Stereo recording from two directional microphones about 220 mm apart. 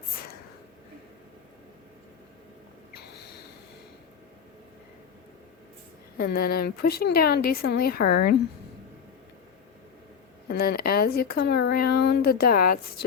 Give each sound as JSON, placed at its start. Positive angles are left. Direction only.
{"t": 2.9, "sound": "snort", "side_deg": 50}
{"t": 6.1, "sound": "a woman's voice", "side_deg": 45}
{"t": 10.5, "sound": "a woman's voice", "side_deg": 45}